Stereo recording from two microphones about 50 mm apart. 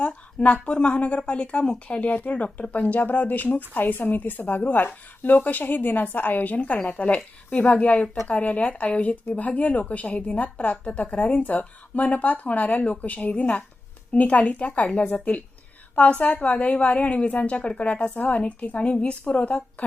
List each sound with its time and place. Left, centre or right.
0.0 s a woman's voice: left